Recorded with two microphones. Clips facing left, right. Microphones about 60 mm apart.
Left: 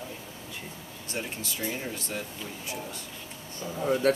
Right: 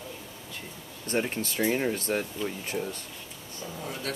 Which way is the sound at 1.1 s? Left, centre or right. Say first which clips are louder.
Right 7 dB; right.